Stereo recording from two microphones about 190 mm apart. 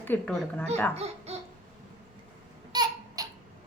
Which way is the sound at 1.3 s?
35° right (ahead or behind).